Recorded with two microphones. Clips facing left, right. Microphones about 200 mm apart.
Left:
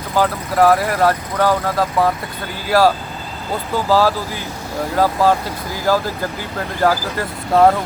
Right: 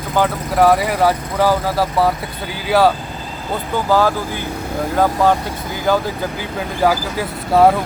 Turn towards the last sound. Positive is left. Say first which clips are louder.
# right 1 dB
turn(degrees=-5)  # may be behind; listen again after turning